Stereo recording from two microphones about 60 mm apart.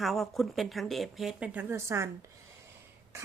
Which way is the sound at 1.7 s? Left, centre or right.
Right.